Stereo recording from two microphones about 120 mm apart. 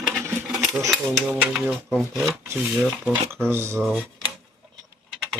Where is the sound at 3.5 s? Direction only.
20° right (ahead or behind).